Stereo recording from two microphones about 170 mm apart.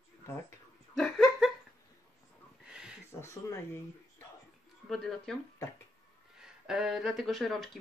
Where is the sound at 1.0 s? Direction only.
Centre (ahead or behind).